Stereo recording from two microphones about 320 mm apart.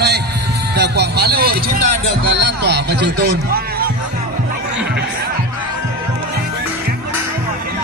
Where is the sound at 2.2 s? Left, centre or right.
Right.